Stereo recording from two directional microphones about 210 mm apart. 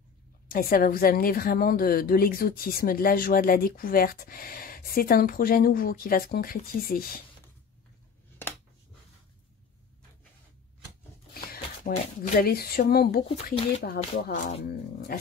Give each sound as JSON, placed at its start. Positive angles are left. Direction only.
{"t": 0.5, "sound": "a woman's voice", "side_deg": 45}
{"t": 11.3, "sound": "shuffling cards", "side_deg": 45}
{"t": 12.2, "sound": "a woman's voice", "side_deg": 45}